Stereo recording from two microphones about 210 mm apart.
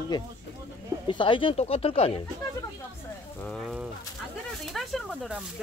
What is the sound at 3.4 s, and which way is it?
Speech, 5° left (ahead or behind).